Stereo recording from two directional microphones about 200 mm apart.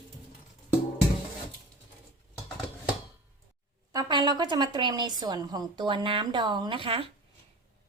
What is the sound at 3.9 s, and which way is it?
A woman's voice, 20° right (ahead or behind).